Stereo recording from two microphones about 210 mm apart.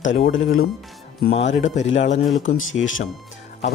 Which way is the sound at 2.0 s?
30° left (ahead or behind).